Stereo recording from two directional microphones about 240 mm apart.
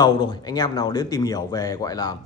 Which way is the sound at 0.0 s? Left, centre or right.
Centre.